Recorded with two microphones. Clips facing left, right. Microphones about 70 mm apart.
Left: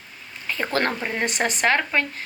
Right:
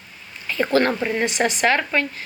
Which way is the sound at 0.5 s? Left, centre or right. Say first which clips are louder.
Right 5 dB; left.